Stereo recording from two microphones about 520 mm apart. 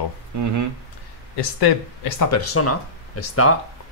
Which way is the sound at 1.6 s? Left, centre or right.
Left.